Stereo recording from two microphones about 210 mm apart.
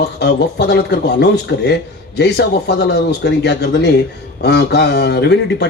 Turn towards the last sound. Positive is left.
turn(degrees=55)  # may be behind; listen again after turning